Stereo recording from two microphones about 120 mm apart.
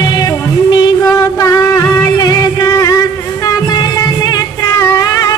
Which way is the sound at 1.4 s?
30° left (ahead or behind).